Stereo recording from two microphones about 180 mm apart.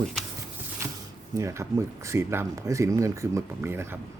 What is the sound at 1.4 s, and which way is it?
Speech, 15° right (ahead or behind).